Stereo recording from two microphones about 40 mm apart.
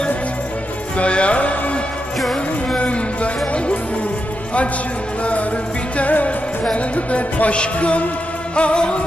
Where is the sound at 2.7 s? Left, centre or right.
Left.